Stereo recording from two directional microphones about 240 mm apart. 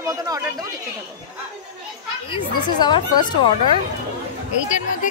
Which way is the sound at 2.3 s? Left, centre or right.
Centre.